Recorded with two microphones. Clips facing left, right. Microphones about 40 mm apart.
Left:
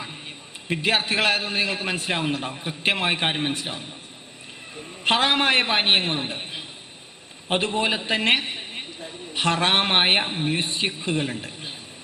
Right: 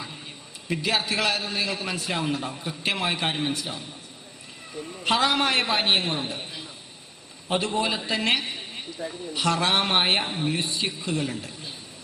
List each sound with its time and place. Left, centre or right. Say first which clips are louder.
0.0 s a man's voice: left 2 dB; left
5.0 s a man's voice: left 2 dB; left